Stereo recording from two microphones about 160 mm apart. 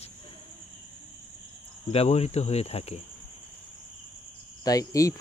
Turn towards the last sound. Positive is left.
turn(degrees=20)  # may be behind; listen again after turning